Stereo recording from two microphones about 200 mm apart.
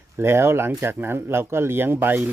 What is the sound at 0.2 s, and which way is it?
Speech, 10° right (ahead or behind).